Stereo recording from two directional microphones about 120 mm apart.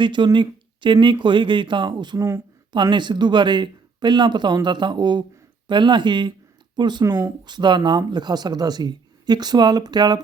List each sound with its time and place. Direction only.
0.0 s speech: 40° right (ahead or behind)